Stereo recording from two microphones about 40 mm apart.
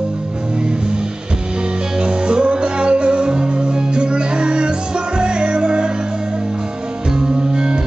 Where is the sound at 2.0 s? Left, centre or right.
Right.